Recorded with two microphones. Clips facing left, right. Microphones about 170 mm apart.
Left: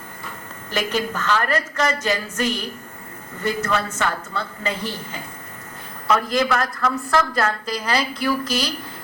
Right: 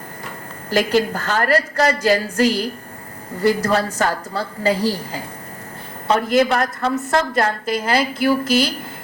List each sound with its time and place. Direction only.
0.9 s a woman's voice: 35° right (ahead or behind)